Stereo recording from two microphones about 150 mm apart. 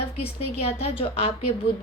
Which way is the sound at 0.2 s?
45° left (ahead or behind).